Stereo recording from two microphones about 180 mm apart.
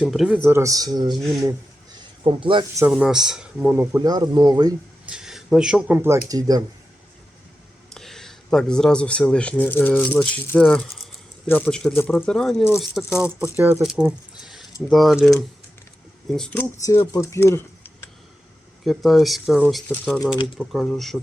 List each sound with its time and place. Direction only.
0.0 s speech: centre (ahead or behind)
0.4 s speech: 15° right (ahead or behind)
1.4 s a sound: 20° right (ahead or behind)
2.9 s speech: 5° right (ahead or behind); by 4.7 s 20° right (ahead or behind)
5.0 s speech: 5° right (ahead or behind); by 6.7 s 20° right (ahead or behind)
7.9 s speech: centre (ahead or behind)
13.4 s speech: 10° right (ahead or behind)
13.8 s a sound: 5° right (ahead or behind)
14.8 s speech: centre (ahead or behind)
16.3 s speech: 5° left (ahead or behind)
16.8 s speech: 15° left (ahead or behind)
18.9 s speech: centre (ahead or behind)